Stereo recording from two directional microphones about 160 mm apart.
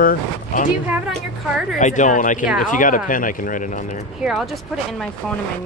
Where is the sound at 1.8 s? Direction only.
50° left (ahead or behind).